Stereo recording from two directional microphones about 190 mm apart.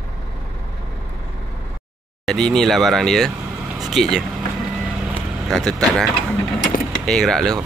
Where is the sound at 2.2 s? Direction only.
Centre (ahead or behind).